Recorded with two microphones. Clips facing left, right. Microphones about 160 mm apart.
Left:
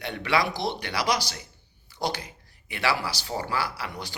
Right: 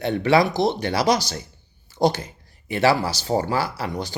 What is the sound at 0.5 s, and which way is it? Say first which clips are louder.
Speech: right 8 dB; 45° right (ahead or behind).